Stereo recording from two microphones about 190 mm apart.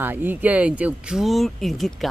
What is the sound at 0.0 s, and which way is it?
Speech, 10° right (ahead or behind).